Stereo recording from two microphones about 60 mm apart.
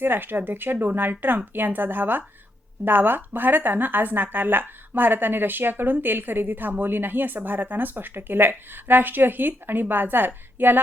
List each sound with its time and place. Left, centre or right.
0.0 s speech: right